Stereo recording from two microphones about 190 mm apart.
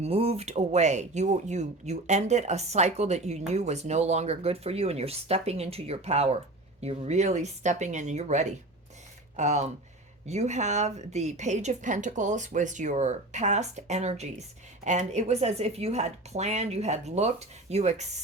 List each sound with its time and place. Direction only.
0.0 s speech: 30° right (ahead or behind)